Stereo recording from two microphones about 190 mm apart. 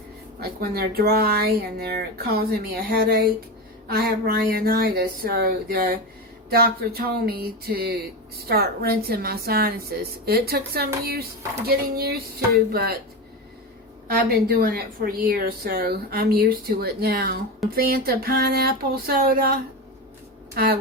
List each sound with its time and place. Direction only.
0.3 s a woman's voice: 55° right (ahead or behind)
6.5 s a sound: 55° right (ahead or behind)
8.4 s a woman's voice: 55° right (ahead or behind)
14.2 s a woman's voice: 50° right (ahead or behind)
17.7 s a sound: 55° right (ahead or behind)
20.5 s speech: 55° right (ahead or behind)